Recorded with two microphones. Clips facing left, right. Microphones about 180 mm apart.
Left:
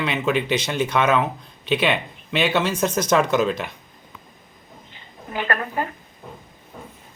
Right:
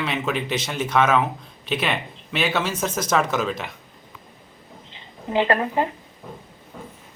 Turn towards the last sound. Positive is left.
turn(degrees=-20)  # may be behind; listen again after turning